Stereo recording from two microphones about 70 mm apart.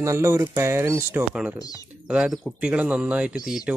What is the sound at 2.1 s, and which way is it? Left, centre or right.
Speech, centre.